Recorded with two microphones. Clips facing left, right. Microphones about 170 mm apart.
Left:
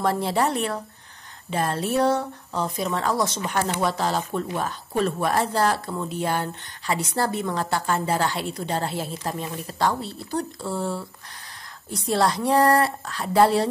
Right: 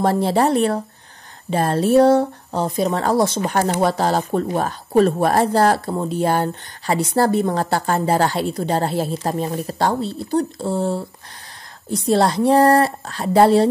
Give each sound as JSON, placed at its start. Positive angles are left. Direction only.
{"t": 0.0, "sound": "a woman's voice", "side_deg": -35}